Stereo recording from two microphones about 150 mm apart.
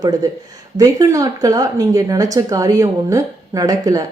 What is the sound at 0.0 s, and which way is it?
Speech, 25° right (ahead or behind).